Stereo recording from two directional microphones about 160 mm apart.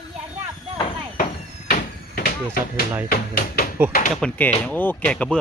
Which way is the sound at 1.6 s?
80° left.